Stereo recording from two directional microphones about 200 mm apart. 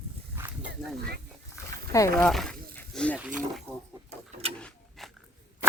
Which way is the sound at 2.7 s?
5° left (ahead or behind).